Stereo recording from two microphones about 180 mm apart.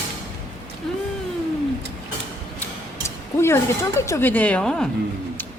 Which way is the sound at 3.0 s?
15° left (ahead or behind).